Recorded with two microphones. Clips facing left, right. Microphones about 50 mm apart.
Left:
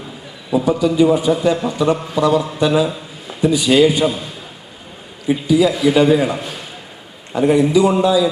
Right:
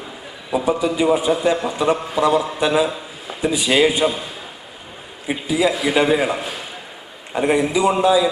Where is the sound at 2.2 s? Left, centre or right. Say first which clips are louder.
Left 2 dB; right.